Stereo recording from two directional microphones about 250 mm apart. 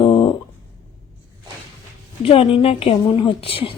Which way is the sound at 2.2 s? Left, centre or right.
Left.